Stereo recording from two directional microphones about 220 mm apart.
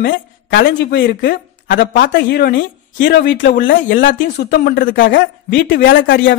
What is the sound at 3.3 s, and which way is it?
Speech, 55° left (ahead or behind).